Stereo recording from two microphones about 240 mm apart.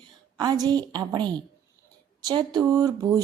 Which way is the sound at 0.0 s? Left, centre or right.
Centre.